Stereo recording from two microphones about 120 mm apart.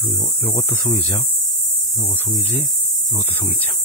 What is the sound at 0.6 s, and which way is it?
Speech, 15° left (ahead or behind).